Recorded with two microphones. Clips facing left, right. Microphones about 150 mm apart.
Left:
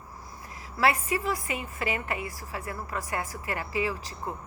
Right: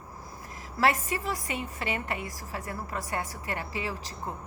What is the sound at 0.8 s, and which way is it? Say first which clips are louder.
A woman's voice: left 1 dB; 40° right (ahead or behind).